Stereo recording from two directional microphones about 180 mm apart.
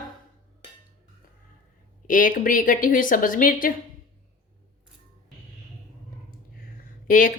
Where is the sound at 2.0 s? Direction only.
50° left (ahead or behind).